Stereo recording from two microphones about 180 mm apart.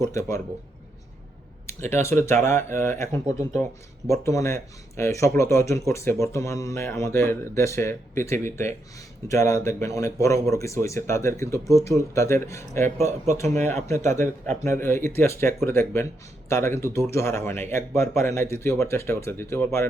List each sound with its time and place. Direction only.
0.1 s speech: 15° left (ahead or behind)
1.9 s speech: 15° left (ahead or behind)